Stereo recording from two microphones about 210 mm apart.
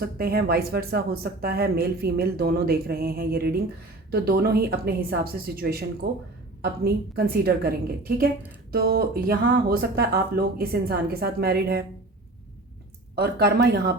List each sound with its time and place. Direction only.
0.0 s speech: 45° right (ahead or behind)
13.1 s speech: 50° right (ahead or behind)